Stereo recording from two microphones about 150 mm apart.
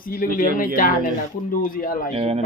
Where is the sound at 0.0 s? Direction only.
70° left (ahead or behind).